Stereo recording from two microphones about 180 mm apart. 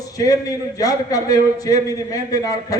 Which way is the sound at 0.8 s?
20° left (ahead or behind).